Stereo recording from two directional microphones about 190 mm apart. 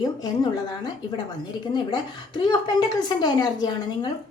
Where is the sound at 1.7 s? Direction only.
25° left (ahead or behind).